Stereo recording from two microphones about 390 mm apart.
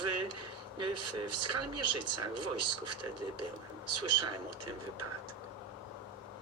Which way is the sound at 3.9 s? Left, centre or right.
Right.